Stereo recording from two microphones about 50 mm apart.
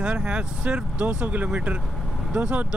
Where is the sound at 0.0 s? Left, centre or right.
Right.